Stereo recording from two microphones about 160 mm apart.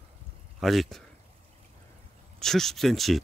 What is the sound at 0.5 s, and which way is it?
Speech, centre (ahead or behind).